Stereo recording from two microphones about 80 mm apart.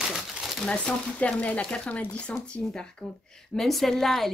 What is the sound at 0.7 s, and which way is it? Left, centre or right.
A woman's voice, centre.